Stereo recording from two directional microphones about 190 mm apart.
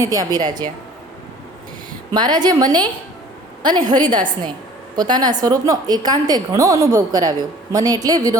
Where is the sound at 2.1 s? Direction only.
20° right (ahead or behind).